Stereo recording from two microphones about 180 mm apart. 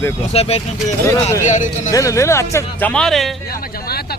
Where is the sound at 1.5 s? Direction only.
40° left (ahead or behind).